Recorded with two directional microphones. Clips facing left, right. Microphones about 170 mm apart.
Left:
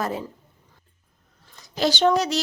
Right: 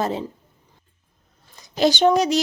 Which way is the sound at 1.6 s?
20° right (ahead or behind).